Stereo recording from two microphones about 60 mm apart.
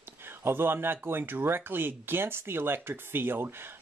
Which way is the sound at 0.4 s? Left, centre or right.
Right.